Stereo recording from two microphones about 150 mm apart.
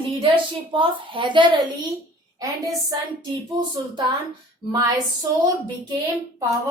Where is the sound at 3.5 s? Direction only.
30° right (ahead or behind).